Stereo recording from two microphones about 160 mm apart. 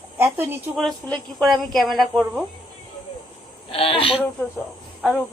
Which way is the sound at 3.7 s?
35° left (ahead or behind).